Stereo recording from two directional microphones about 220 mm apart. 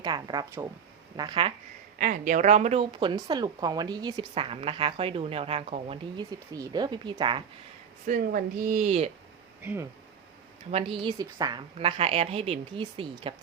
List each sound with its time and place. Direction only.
0.0 s speech: 20° right (ahead or behind)
2.0 s speech: 35° right (ahead or behind); by 7.4 s 20° right (ahead or behind)
8.0 s speech: 40° right (ahead or behind)
10.7 s speech: 25° right (ahead or behind)